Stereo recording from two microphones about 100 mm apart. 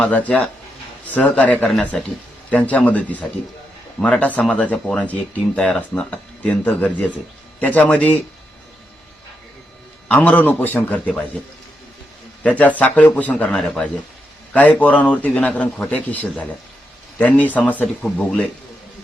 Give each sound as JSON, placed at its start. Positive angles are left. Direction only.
{"t": 0.0, "sound": "a man's voice", "side_deg": 15}
{"t": 10.1, "sound": "a man's voice", "side_deg": 15}
{"t": 12.4, "sound": "a man's voice", "side_deg": 15}